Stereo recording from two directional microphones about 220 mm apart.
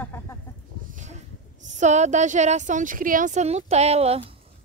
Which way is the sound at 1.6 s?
30° right (ahead or behind).